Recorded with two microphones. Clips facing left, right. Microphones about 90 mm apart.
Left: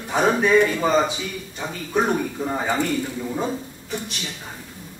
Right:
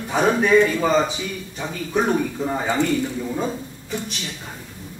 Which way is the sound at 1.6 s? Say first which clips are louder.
Right 2 dB; centre (ahead or behind).